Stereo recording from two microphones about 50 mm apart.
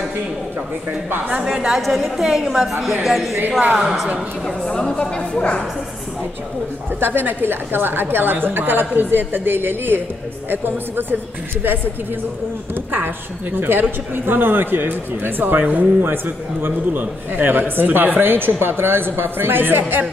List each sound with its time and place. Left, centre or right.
1.3 s a woman's voice: centre
1.7 s a woman's voice: centre
4.6 s a woman's voice: centre
5.3 s speech: left
7.0 s a man's voice: right
12.9 s a man's voice: right